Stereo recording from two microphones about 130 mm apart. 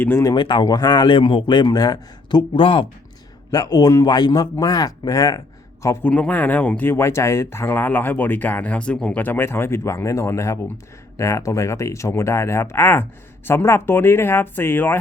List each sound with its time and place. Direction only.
0.0 s speech: 20° left (ahead or behind)
0.3 s a man's voice: 35° left (ahead or behind)
3.5 s a man's voice: 30° left (ahead or behind)
6.1 s speech: 10° left (ahead or behind)